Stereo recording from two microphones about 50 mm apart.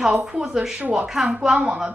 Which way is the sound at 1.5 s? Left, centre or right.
Centre.